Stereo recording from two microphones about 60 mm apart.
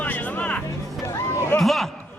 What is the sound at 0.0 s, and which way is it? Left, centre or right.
Music, left.